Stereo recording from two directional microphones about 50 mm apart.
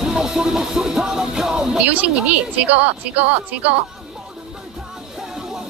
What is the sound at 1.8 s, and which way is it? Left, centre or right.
A woman's voice, right.